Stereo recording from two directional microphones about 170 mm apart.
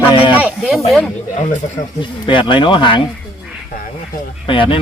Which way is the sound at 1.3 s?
40° left (ahead or behind).